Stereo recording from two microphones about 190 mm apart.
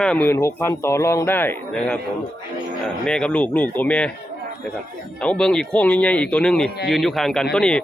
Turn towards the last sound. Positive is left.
turn(degrees=5)  # may be behind; listen again after turning